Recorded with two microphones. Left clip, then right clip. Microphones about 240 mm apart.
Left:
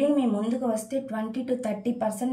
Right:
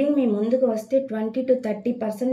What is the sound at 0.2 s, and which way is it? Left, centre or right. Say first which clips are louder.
Speech: right 7 dB; left.